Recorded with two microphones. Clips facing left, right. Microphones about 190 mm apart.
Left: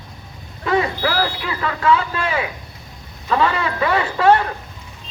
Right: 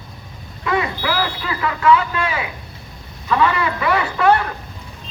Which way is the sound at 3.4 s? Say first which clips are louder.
Right 1 dB; 30° left (ahead or behind).